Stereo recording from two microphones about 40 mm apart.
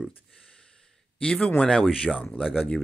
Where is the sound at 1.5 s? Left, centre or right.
Centre.